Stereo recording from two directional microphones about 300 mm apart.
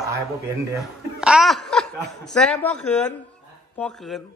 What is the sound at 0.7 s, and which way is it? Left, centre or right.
A man's voice, centre.